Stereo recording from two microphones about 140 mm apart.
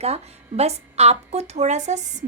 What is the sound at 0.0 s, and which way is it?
A woman's voice, 50° right (ahead or behind).